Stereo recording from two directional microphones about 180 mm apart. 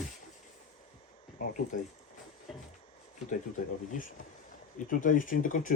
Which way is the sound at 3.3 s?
45° left (ahead or behind).